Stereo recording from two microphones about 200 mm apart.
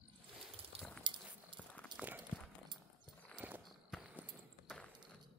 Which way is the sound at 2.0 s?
10° right (ahead or behind).